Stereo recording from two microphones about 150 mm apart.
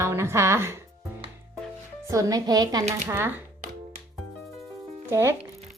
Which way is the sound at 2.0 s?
20° right (ahead or behind).